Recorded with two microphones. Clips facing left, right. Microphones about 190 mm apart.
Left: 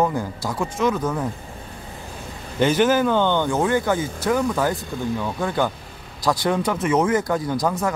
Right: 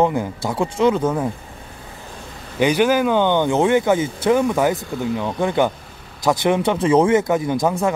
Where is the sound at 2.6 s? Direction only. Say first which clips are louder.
Right 1 dB; 10° right (ahead or behind).